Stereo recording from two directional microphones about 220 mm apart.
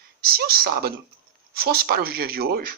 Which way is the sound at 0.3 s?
45° right (ahead or behind).